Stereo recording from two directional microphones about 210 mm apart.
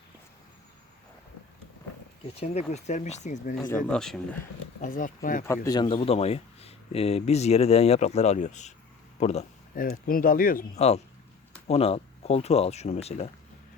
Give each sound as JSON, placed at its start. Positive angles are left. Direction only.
{"t": 2.4, "sound": "speech", "side_deg": 30}
{"t": 3.8, "sound": "speech", "side_deg": 5}
{"t": 4.8, "sound": "speech", "side_deg": 40}
{"t": 5.6, "sound": "speech", "side_deg": 20}
{"t": 9.1, "sound": "a sound", "side_deg": 30}
{"t": 9.8, "sound": "speech", "side_deg": 45}